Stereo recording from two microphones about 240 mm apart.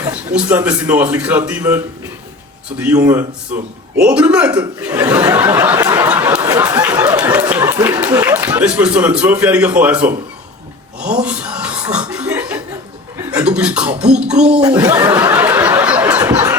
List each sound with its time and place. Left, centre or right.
0.0 s a man's voice: centre
2.7 s a sound: centre
4.0 s a man's voice: centre
4.8 s a sound: centre
11.2 s chuckle: centre
13.2 s a man's voice: centre
14.6 s snicker: centre